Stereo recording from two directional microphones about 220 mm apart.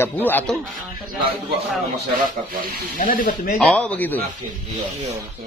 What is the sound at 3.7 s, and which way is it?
Speech, 5° left (ahead or behind).